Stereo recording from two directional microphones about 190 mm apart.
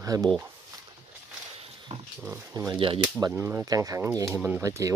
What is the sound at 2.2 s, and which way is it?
Speech, 15° right (ahead or behind).